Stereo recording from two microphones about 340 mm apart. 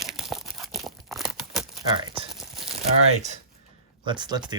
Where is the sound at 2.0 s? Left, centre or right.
Centre.